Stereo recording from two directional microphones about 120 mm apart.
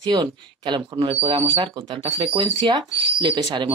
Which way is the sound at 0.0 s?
40° right (ahead or behind).